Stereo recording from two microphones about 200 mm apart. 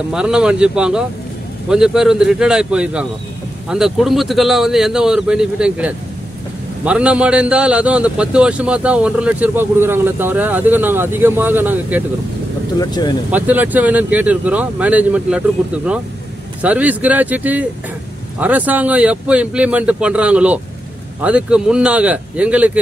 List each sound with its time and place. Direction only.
0.1 s a man's voice: 5° right (ahead or behind)
12.7 s speech: 20° left (ahead or behind)
13.3 s a man's voice: 10° right (ahead or behind)